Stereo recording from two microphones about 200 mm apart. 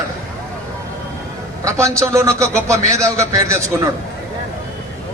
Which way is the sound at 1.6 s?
15° right (ahead or behind).